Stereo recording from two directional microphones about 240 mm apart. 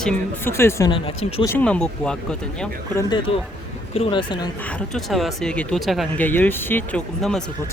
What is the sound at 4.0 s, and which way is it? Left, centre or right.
Speech, centre.